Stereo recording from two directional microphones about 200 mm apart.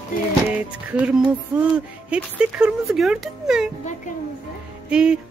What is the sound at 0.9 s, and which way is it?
Speech, 5° right (ahead or behind).